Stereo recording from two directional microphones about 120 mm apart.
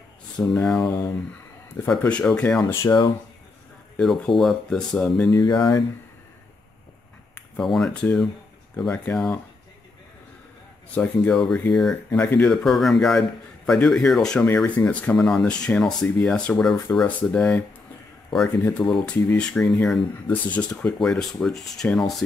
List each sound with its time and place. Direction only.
0.4 s speech: 5° left (ahead or behind); by 2.9 s 20° left (ahead or behind)
4.0 s speech: centre (ahead or behind)
5.3 s speech: 35° left (ahead or behind)
7.6 s speech: centre (ahead or behind)
11.0 s speech: 5° left (ahead or behind)
18.7 s speech: 5° left (ahead or behind)